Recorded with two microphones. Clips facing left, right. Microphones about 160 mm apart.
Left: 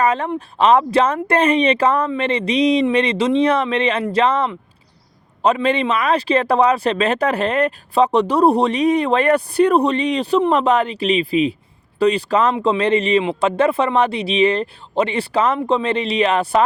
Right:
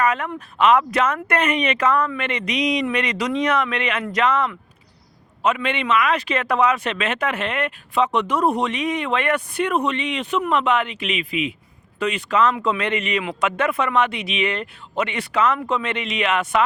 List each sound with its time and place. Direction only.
0.0 s speech: 30° left (ahead or behind)